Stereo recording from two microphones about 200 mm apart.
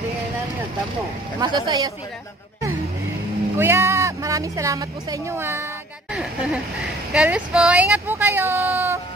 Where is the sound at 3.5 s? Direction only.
10° right (ahead or behind).